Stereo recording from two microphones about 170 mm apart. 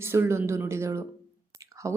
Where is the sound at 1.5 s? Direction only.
20° right (ahead or behind).